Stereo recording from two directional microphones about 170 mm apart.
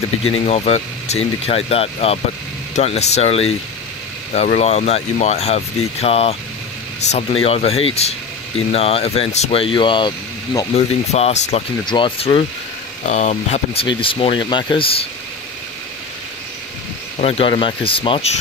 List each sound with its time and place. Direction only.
0.2 s speech: 35° left (ahead or behind)
10.7 s speech: 35° left (ahead or behind)
13.8 s speech: 30° left (ahead or behind)
17.2 s speech: 35° left (ahead or behind)